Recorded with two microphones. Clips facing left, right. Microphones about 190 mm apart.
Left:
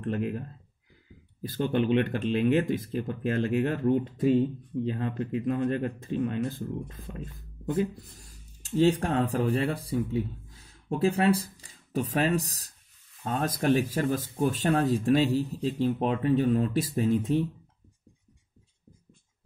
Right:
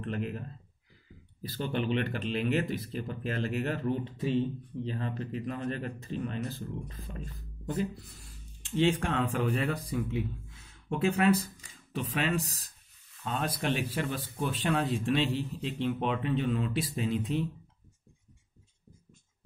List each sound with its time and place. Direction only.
0.0 s speech: 50° left (ahead or behind)
1.4 s speech: 50° left (ahead or behind)
8.2 s speech: 40° left (ahead or behind)